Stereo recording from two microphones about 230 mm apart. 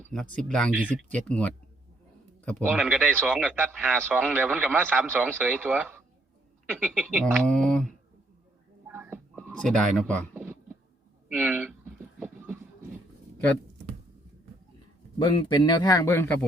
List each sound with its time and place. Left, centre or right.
0.1 s speech: centre
1.1 s a man's voice: centre
8.9 s a sound: centre
9.3 s speech: centre
11.3 s a sound: centre
15.2 s speech: centre